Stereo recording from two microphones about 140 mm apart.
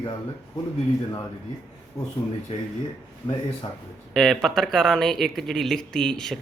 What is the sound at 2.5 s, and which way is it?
Speech, 45° left (ahead or behind).